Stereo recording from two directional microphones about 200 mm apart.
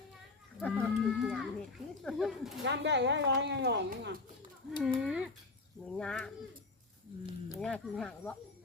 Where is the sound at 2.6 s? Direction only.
60° right (ahead or behind).